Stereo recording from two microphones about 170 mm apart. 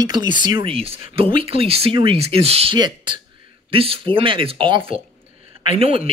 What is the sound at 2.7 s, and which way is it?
A man's voice, 25° right (ahead or behind).